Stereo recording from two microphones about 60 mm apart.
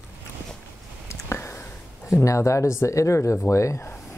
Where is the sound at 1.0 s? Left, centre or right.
Left.